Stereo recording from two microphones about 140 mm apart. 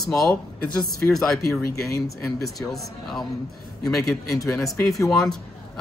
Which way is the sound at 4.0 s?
25° left (ahead or behind).